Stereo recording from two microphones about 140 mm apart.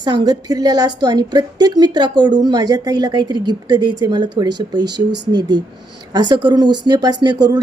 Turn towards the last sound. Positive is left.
turn(degrees=-30)  # may be behind; listen again after turning